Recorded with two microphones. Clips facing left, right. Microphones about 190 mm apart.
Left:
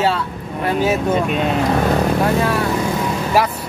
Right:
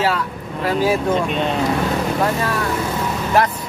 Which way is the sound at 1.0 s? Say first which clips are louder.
Left 1 dB; 5° left (ahead or behind).